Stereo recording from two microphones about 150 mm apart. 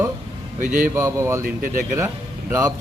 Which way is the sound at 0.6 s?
60° right (ahead or behind).